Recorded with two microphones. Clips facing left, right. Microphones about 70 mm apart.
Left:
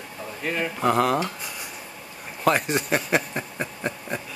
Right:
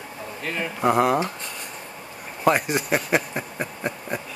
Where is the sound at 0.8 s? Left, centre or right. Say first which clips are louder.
Right 2 dB; centre.